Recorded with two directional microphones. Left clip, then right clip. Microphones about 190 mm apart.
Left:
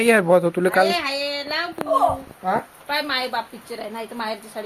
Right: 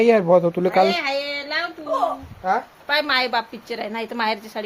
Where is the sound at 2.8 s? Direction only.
60° right (ahead or behind).